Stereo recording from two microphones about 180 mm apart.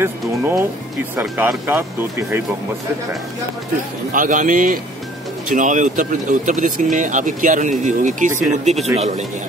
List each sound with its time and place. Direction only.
0.0 s speech: 10° right (ahead or behind)
4.1 s speech: 50° right (ahead or behind)